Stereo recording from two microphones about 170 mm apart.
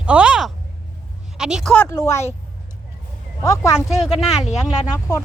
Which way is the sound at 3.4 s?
20° left (ahead or behind).